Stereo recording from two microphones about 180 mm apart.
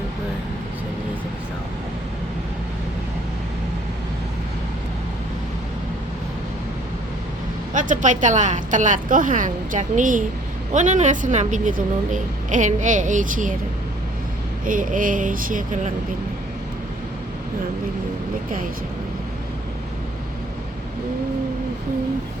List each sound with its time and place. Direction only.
7.7 s speech: 45° right (ahead or behind)
14.6 s speech: 45° right (ahead or behind)